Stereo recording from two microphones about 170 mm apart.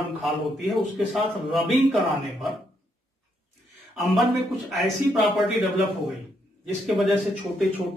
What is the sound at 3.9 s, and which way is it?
Speech, centre (ahead or behind).